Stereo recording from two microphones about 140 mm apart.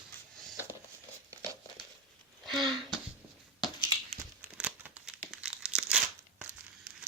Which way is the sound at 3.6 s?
30° left (ahead or behind).